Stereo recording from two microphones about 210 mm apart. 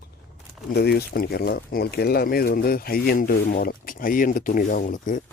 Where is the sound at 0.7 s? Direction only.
50° left (ahead or behind).